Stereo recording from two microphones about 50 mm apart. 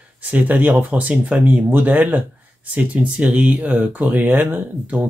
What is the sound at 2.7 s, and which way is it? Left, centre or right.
Speech, right.